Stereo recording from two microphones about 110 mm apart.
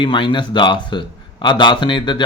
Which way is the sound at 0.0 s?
45° left (ahead or behind).